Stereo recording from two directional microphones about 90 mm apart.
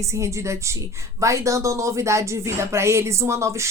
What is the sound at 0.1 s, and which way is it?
A woman's voice, 35° right (ahead or behind).